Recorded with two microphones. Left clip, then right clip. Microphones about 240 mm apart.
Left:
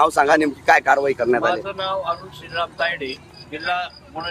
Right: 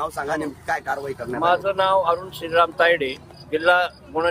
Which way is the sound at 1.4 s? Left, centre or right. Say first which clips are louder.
Right 3 dB; centre.